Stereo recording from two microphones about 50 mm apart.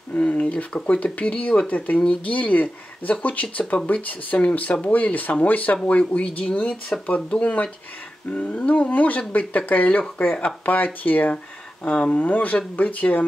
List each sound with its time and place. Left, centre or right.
0.3 s speech: left
11.8 s speech: left